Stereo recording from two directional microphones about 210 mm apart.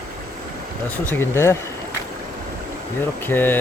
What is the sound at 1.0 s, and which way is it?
Speech, 10° left (ahead or behind).